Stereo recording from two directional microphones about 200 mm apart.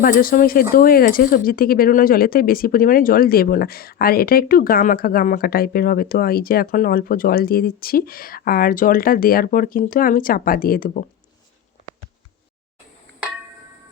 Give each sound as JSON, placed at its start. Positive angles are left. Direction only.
{"t": 0.0, "sound": "speech", "side_deg": 45}